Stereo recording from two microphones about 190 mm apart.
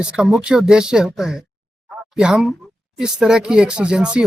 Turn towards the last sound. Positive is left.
turn(degrees=-5)  # may be behind; listen again after turning